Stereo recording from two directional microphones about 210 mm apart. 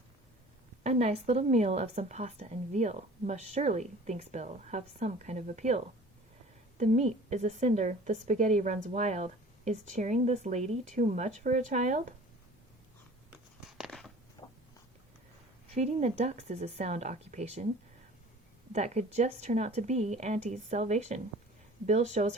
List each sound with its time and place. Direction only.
0.9 s a woman's voice: 30° right (ahead or behind)
13.6 s a sound: centre (ahead or behind)
15.7 s a woman's voice: 30° right (ahead or behind)
18.7 s a woman's voice: 35° right (ahead or behind)